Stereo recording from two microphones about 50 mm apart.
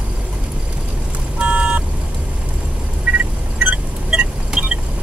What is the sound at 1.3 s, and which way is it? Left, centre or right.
Vehicle, right.